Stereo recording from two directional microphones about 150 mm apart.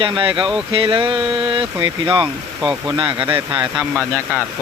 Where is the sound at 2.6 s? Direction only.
Centre (ahead or behind).